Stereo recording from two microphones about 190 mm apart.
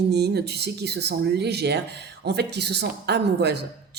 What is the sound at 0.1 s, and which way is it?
A man's voice, 60° right (ahead or behind).